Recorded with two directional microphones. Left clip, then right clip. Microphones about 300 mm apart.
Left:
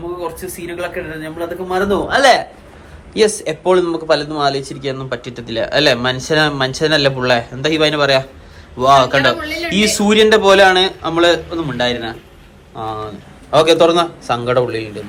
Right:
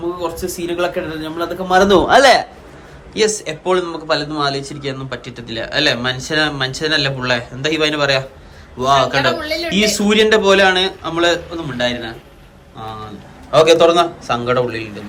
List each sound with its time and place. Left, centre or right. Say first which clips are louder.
0.5 s speech: right 4 dB; centre
2.2 s speech: even; centre
9.5 s a man's voice: right 1 dB; right
9.7 s speech: left 2 dB; centre